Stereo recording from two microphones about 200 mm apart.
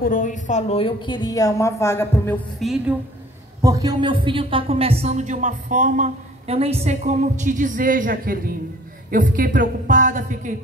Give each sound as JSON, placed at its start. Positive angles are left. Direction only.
{"t": 0.0, "sound": "a woman's voice", "side_deg": 40}
{"t": 3.6, "sound": "a woman's voice", "side_deg": -15}